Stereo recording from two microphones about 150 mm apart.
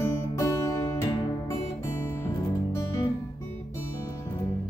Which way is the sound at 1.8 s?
15° left (ahead or behind).